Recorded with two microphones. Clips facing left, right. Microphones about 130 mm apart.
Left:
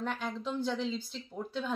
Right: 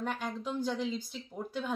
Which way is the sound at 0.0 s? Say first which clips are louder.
Even; 10° right (ahead or behind).